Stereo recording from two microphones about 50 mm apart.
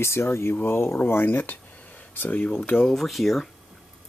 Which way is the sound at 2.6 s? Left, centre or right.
Left.